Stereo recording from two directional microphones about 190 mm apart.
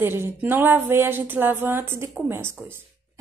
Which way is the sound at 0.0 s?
10° right (ahead or behind).